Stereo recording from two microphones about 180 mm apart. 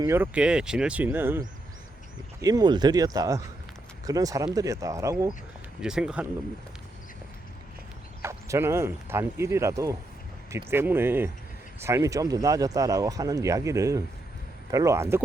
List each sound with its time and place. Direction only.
0.0 s speech: 10° right (ahead or behind)
2.4 s a man's voice: 20° right (ahead or behind)
5.8 s speech: 5° right (ahead or behind)
8.2 s a man's voice: 15° right (ahead or behind)